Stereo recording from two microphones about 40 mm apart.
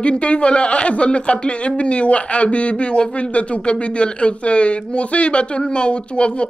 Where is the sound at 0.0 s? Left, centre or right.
Left.